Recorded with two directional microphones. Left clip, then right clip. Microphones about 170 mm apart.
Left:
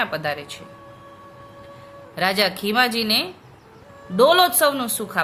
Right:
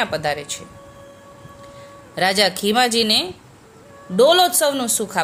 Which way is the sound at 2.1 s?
20° right (ahead or behind).